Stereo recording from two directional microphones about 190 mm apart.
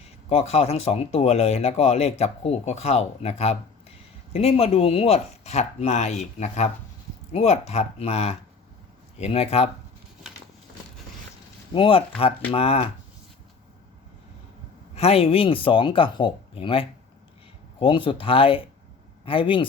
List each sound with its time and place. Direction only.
0.3 s speech: 35° left (ahead or behind)
10.3 s a sound: 5° right (ahead or behind)
11.7 s speech: 25° left (ahead or behind)
14.9 s speech: 30° left (ahead or behind)